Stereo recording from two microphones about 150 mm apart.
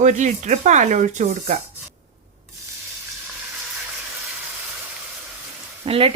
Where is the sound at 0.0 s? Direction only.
55° right (ahead or behind).